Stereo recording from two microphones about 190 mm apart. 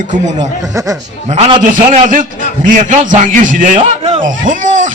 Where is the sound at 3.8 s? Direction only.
30° right (ahead or behind).